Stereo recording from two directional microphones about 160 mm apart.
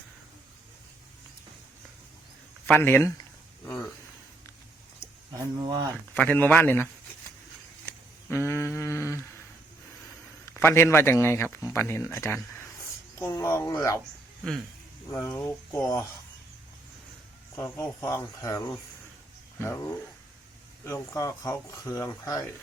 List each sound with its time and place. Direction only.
2.6 s a man's voice: 15° left (ahead or behind)
5.4 s speech: 25° right (ahead or behind)
6.1 s a man's voice: 10° left (ahead or behind)
7.9 s a sound: 15° left (ahead or behind)
10.5 s a man's voice: 15° left (ahead or behind)
15.1 s a man's voice: 10° left (ahead or behind)
17.7 s a man's voice: 15° left (ahead or behind)